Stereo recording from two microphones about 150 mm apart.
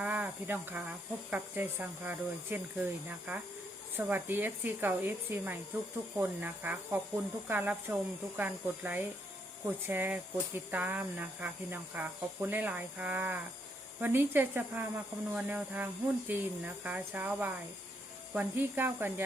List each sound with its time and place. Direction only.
0.0 s speech: 10° right (ahead or behind)